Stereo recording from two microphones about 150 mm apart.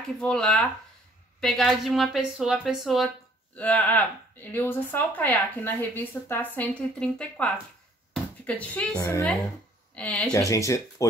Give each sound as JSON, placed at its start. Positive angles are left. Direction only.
{"t": 0.2, "sound": "a woman's voice", "side_deg": 5}
{"t": 3.5, "sound": "speech", "side_deg": 10}
{"t": 8.1, "sound": "a sound", "side_deg": 10}
{"t": 8.9, "sound": "speech", "side_deg": 25}
{"t": 9.9, "sound": "speech", "side_deg": 5}
{"t": 10.3, "sound": "speech", "side_deg": 20}